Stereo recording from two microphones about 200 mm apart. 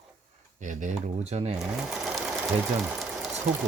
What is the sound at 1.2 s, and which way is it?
Speech, 35° right (ahead or behind).